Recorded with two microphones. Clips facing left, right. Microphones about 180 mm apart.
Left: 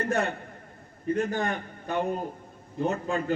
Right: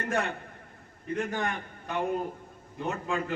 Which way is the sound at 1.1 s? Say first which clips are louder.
Left 3 dB; 35° left (ahead or behind).